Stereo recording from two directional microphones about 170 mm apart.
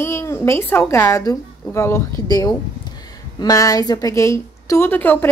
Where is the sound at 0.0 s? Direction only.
15° left (ahead or behind).